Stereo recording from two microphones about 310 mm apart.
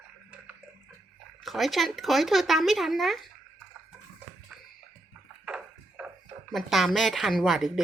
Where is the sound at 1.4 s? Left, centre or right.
Centre.